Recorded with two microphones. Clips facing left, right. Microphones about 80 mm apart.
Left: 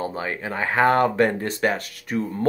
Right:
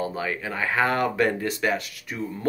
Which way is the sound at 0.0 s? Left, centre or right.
Left.